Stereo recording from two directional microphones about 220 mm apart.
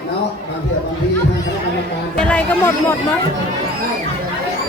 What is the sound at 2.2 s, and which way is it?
Speech, 5° left (ahead or behind).